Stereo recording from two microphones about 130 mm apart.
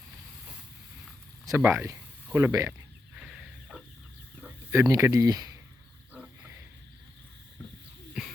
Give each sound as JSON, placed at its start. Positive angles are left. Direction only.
{"t": 1.5, "sound": "speech", "side_deg": -15}
{"t": 3.2, "sound": "fowl", "side_deg": -5}
{"t": 4.7, "sound": "speech", "side_deg": -20}